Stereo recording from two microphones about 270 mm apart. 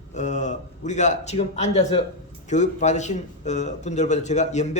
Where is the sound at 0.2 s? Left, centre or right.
Left.